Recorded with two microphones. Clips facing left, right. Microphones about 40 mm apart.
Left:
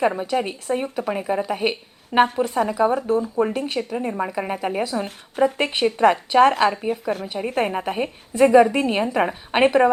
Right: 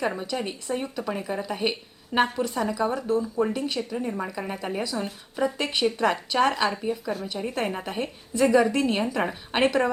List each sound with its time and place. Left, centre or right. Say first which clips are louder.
0.3 s a woman's voice: left 6 dB; left
6.5 s a woman's voice: left 6 dB; left; by 9.9 s centre